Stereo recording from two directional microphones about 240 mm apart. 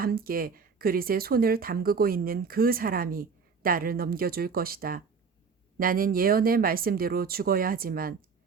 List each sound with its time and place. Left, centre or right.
0.0 s speech: right